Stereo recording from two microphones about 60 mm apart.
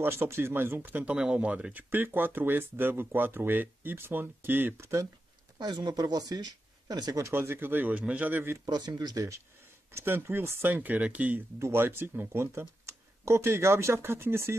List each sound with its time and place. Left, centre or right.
0.0 s speech: right
1.1 s speech: centre; by 4.7 s right
5.7 s speech: right
7.2 s speech: right
7.9 s speech: right
8.6 s speech: right
9.9 s speech: right
10.7 s speech: right
11.6 s speech: right
12.3 s speech: right